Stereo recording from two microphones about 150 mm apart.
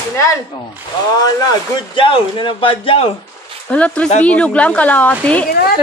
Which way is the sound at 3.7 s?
10° left (ahead or behind).